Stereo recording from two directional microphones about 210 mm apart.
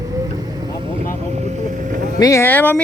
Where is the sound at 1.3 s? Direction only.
35° right (ahead or behind).